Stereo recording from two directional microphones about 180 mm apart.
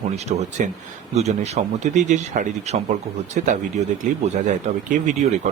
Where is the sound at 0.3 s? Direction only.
40° right (ahead or behind).